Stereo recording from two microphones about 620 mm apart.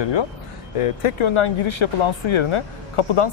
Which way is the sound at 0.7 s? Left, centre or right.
Left.